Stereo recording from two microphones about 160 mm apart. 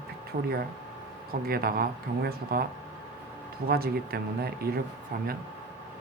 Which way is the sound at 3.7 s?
70° right (ahead or behind).